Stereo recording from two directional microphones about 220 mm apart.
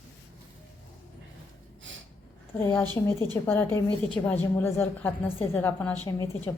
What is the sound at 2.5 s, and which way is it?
A woman's voice, 10° left (ahead or behind).